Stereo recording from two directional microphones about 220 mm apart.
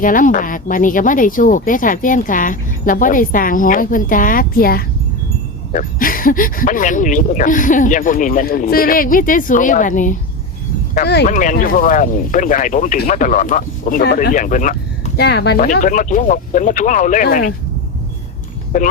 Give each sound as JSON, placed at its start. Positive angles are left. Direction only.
{"t": 0.0, "sound": "speech", "side_deg": 40}
{"t": 10.9, "sound": "speech", "side_deg": 50}
{"t": 11.3, "sound": "speech", "side_deg": 35}